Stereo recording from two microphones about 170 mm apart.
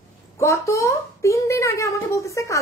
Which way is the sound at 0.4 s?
15° left (ahead or behind).